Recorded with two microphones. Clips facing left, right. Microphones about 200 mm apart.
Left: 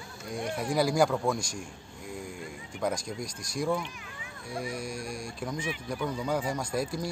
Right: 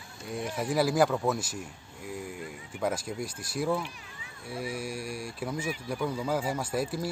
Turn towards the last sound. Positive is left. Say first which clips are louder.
# right 1 dB
turn(degrees=-5)  # may be behind; listen again after turning